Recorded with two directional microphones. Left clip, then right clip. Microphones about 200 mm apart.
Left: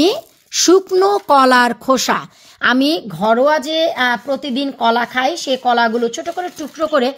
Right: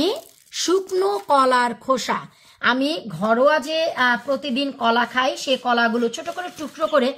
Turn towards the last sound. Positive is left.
turn(degrees=40)  # may be behind; listen again after turning